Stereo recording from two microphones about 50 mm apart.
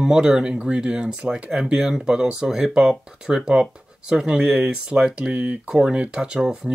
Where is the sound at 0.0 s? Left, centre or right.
Centre.